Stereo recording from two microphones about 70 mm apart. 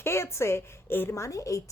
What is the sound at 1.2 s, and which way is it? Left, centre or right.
Speech, left.